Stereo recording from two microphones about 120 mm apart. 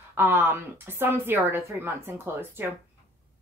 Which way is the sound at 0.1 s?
20° right (ahead or behind).